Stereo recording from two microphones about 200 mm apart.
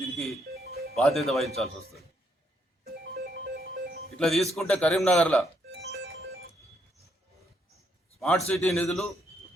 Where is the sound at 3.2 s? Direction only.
50° right (ahead or behind).